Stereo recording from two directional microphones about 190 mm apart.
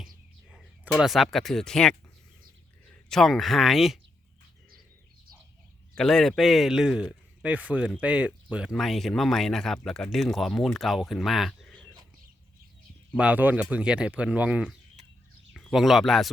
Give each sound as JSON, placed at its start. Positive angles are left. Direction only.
{"t": 0.0, "sound": "a sound", "side_deg": 0}
{"t": 3.1, "sound": "speech", "side_deg": 0}
{"t": 5.9, "sound": "speech", "side_deg": 0}
{"t": 13.1, "sound": "speech", "side_deg": -5}